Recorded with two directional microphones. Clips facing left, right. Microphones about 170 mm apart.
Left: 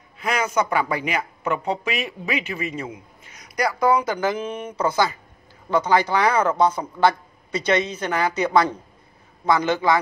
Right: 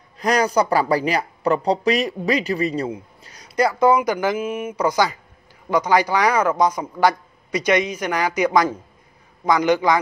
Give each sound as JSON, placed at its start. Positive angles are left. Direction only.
{"t": 0.2, "sound": "speech", "side_deg": -35}